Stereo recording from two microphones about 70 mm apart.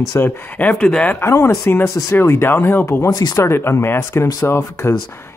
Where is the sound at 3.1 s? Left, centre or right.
Left.